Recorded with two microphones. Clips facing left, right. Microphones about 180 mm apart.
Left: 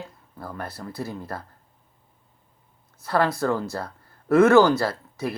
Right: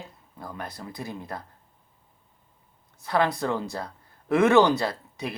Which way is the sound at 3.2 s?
Centre (ahead or behind).